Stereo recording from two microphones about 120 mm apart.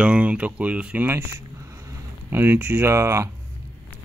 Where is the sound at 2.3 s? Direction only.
15° right (ahead or behind).